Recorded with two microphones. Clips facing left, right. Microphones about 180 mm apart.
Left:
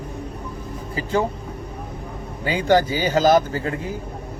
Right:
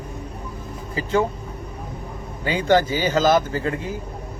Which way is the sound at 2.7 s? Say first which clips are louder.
Even; 40° left (ahead or behind).